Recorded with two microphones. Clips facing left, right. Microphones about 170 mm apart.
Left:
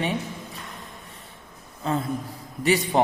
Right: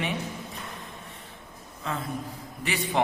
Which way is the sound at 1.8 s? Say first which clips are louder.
Left 7 dB; 35° left (ahead or behind).